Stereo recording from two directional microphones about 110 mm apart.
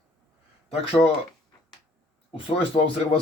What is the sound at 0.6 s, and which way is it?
Speech, 60° left (ahead or behind).